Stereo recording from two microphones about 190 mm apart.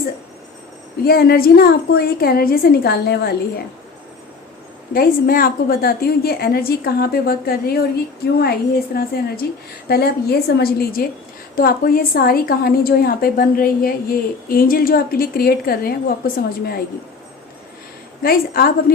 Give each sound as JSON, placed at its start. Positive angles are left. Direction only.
{"t": 1.0, "sound": "a woman's voice", "side_deg": 55}
{"t": 4.9, "sound": "a woman's voice", "side_deg": 50}
{"t": 9.0, "sound": "a woman's voice", "side_deg": 55}
{"t": 18.2, "sound": "a woman's voice", "side_deg": 50}